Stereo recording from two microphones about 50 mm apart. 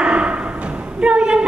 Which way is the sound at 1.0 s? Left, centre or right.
Right.